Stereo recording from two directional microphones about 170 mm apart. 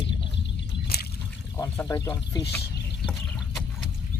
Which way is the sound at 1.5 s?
15° left (ahead or behind).